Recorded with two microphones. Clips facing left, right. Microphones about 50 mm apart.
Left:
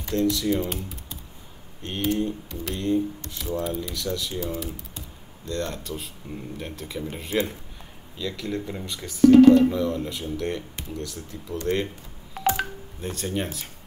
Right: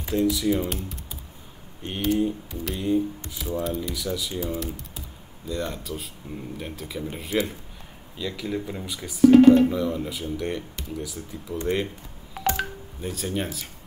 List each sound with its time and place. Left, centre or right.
0.0 s speech: centre
2.1 s speech: centre
12.4 s telephone dialing: centre
13.0 s speech: centre